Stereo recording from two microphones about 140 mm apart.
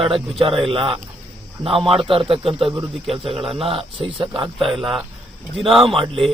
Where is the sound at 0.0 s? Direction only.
40° right (ahead or behind).